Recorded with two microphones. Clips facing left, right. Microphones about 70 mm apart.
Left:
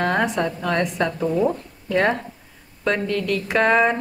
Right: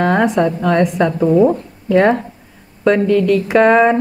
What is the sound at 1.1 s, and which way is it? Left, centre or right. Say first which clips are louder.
A woman's voice: right 11 dB; right.